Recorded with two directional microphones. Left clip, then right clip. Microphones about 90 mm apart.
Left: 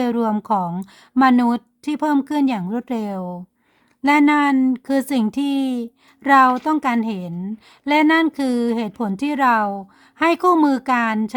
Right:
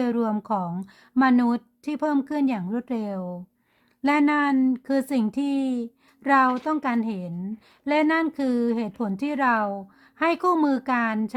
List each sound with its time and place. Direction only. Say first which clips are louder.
0.0 s speech: left 5 dB; 45° left (ahead or behind)